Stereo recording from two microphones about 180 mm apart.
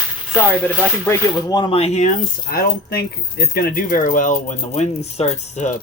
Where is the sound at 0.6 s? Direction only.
15° left (ahead or behind).